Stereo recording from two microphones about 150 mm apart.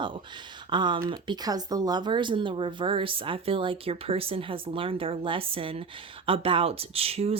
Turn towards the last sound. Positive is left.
turn(degrees=-40)  # may be behind; listen again after turning